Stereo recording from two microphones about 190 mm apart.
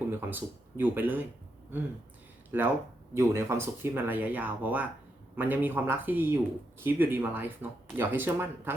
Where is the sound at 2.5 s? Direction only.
10° right (ahead or behind).